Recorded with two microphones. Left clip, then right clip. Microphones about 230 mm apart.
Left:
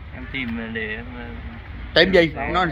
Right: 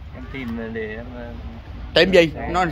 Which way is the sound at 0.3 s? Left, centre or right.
Centre.